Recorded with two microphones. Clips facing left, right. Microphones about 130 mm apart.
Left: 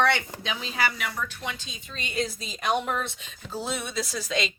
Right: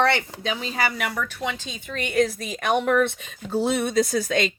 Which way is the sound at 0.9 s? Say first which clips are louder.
Right 5 dB; 75° right (ahead or behind).